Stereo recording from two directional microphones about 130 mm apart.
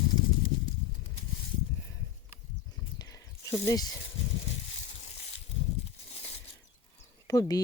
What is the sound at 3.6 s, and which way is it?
Speech, 25° left (ahead or behind).